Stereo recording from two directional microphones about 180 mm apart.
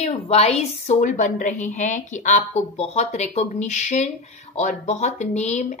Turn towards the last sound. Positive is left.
turn(degrees=40)  # may be behind; listen again after turning